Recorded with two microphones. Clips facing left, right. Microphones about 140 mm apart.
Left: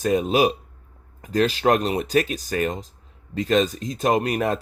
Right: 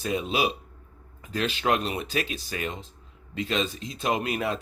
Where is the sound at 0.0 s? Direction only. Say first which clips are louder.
Left 7 dB; 45° left (ahead or behind).